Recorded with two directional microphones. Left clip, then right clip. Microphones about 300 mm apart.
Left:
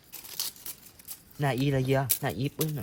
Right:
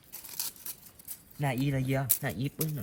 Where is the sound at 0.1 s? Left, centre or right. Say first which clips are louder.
Left 4 dB; centre.